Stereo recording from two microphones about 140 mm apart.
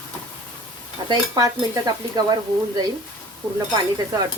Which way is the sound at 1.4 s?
25° right (ahead or behind).